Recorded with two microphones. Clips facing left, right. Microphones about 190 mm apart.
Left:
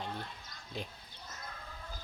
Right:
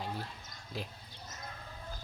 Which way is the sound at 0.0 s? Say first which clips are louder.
Right 1 dB; 5° right (ahead or behind).